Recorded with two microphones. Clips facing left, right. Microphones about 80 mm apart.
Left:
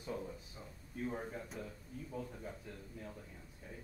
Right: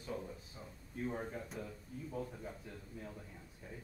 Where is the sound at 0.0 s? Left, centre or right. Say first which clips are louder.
Left 1 dB; centre.